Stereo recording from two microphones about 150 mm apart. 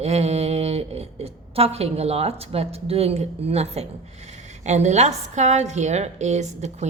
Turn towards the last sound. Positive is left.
turn(degrees=-50)  # may be behind; listen again after turning